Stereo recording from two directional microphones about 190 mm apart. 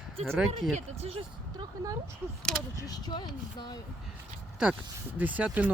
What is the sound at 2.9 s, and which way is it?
Speech, 20° left (ahead or behind).